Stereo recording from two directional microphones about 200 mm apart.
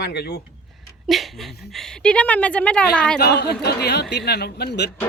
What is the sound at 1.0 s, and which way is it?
Speech, centre (ahead or behind).